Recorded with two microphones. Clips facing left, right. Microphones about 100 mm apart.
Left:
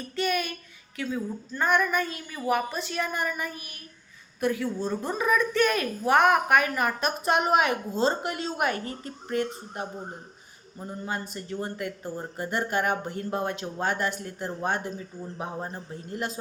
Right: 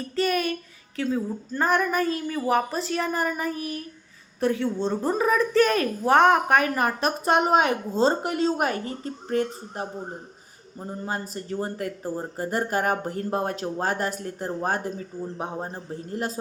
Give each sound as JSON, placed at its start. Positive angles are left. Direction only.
{"t": 0.2, "sound": "a woman's voice", "side_deg": -35}
{"t": 10.8, "sound": "a woman's voice", "side_deg": -35}
{"t": 15.4, "sound": "a woman's voice", "side_deg": -25}